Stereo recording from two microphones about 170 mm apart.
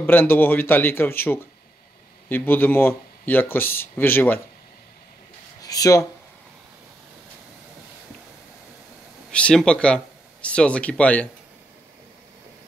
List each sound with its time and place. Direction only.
0.0 s speech: 10° left (ahead or behind)
5.6 s a sound: 20° left (ahead or behind)
9.3 s speech: 5° left (ahead or behind)